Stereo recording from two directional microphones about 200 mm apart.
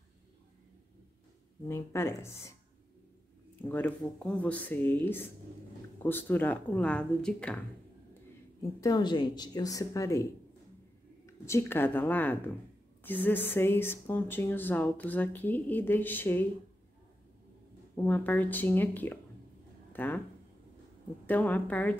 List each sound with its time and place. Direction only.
1.7 s speech: 15° left (ahead or behind)
3.6 s speech: 10° left (ahead or behind)
8.8 s a woman's voice: 20° left (ahead or behind)
11.2 s speech: 15° left (ahead or behind)
17.9 s speech: 10° left (ahead or behind)
21.3 s speech: 10° left (ahead or behind)